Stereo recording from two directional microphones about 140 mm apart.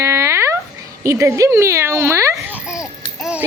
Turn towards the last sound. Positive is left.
turn(degrees=-5)  # may be behind; listen again after turning